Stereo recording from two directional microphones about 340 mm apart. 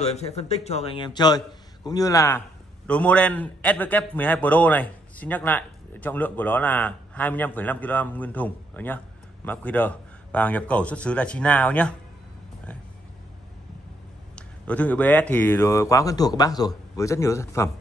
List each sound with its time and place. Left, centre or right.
0.0 s a man's voice: centre
14.7 s a man's voice: centre